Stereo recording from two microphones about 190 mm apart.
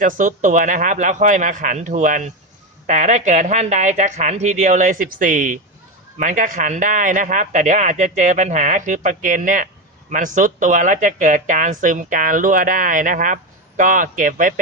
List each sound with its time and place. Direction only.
0.0 s speech: 45° right (ahead or behind)